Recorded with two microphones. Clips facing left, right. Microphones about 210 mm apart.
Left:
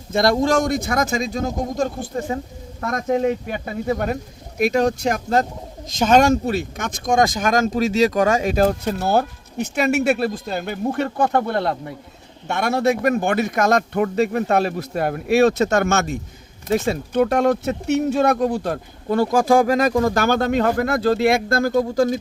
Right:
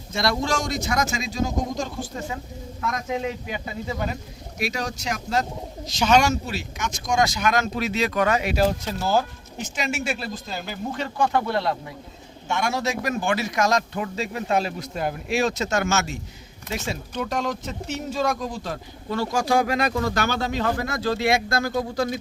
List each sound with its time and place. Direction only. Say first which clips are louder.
0.1 s speech: left 7 dB; 50° left (ahead or behind)
2.1 s speech: left 7 dB; 35° left (ahead or behind)